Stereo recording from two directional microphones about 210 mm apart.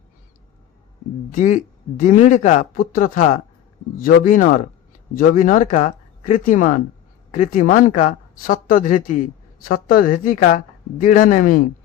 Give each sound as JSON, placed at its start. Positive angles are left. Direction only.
{"t": 1.3, "sound": "speech", "side_deg": 40}